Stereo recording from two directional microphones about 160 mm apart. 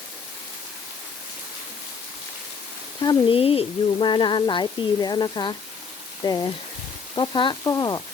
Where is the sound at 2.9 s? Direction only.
30° left (ahead or behind).